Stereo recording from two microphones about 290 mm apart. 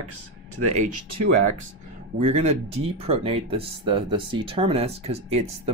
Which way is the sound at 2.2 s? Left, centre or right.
Right.